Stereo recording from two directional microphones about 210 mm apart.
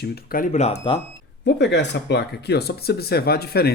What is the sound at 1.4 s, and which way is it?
Speech, 55° left (ahead or behind).